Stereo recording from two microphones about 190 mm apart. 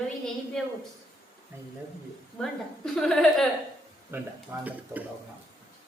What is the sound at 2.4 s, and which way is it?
A woman's voice, centre (ahead or behind).